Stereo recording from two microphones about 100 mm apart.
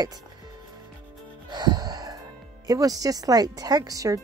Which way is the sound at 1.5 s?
45° right (ahead or behind).